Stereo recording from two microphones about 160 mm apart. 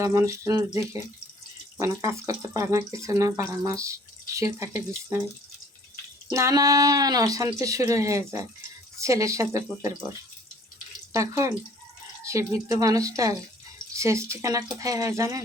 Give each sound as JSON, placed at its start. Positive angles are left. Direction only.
{"t": 0.0, "sound": "speech", "side_deg": -15}
{"t": 1.8, "sound": "speech", "side_deg": -20}
{"t": 6.3, "sound": "speech", "side_deg": -20}
{"t": 11.1, "sound": "speech", "side_deg": -20}